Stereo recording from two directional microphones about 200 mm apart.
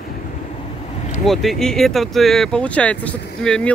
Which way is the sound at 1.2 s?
Centre (ahead or behind).